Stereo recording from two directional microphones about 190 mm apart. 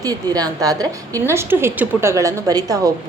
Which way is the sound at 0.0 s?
20° right (ahead or behind).